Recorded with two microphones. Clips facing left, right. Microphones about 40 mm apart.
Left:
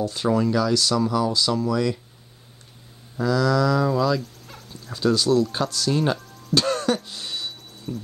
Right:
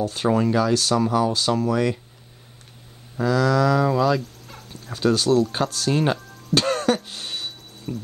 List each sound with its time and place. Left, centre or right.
0.0 s speech: right
3.2 s speech: right
4.2 s dog: centre
4.9 s speech: right
6.6 s music: right
7.1 s a sound: right
7.9 s speech: right